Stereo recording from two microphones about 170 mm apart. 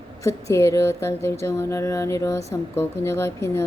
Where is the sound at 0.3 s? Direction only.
15° left (ahead or behind).